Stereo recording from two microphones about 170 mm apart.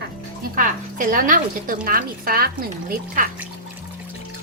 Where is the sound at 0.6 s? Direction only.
50° right (ahead or behind).